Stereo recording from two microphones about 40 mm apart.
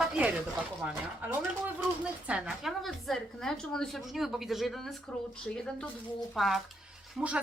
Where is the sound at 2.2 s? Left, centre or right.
Right.